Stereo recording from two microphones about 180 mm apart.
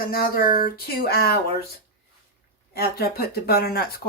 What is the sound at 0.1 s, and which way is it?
Speech, 55° left (ahead or behind).